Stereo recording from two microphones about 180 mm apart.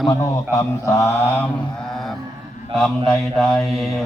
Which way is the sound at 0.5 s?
15° left (ahead or behind).